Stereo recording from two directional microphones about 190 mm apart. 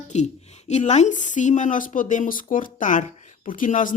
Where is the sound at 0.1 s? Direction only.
35° left (ahead or behind).